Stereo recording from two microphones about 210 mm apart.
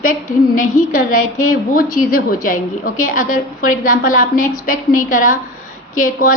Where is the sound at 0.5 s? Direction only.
40° left (ahead or behind).